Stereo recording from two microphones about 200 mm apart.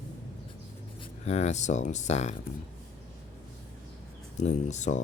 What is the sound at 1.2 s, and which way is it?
Speech, 35° left (ahead or behind).